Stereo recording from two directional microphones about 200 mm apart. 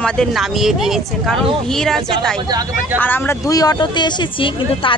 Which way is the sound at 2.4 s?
20° right (ahead or behind).